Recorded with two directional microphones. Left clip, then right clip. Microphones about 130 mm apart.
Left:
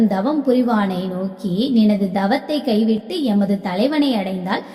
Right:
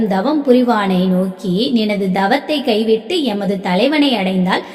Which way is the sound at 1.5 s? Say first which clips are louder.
Right 2 dB; 15° right (ahead or behind).